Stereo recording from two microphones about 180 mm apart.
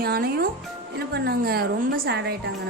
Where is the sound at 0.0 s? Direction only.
60° right (ahead or behind).